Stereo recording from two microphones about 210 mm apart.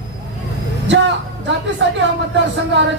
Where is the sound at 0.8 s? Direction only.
60° right (ahead or behind).